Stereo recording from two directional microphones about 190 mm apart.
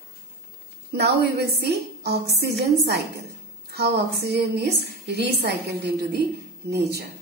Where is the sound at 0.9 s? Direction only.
60° right (ahead or behind).